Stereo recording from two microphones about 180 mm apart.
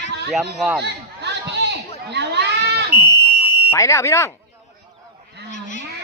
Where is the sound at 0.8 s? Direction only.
70° right (ahead or behind).